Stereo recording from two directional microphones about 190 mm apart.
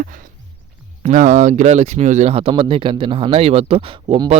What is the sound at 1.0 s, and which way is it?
Speech, 40° right (ahead or behind).